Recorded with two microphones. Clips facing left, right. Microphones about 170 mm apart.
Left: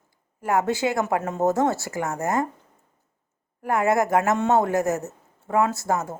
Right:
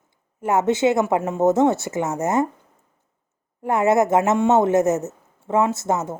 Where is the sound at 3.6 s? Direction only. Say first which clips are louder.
Right 4 dB; 25° right (ahead or behind).